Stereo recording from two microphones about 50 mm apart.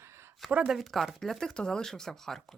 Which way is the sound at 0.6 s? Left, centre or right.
Centre.